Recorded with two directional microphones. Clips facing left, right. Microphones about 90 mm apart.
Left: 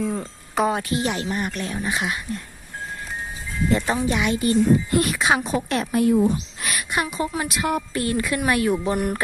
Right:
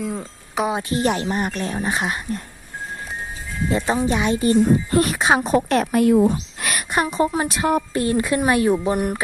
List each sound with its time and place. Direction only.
0.0 s speech: 5° right (ahead or behind)
0.7 s a woman's voice: 25° right (ahead or behind)
0.9 s a woman's voice: 35° right (ahead or behind)
3.7 s a woman's voice: 15° right (ahead or behind)
4.0 s a woman's voice: 30° right (ahead or behind)
5.5 s a woman's voice: 50° right (ahead or behind)
6.9 s a woman's voice: 35° right (ahead or behind); by 9.2 s 20° right (ahead or behind)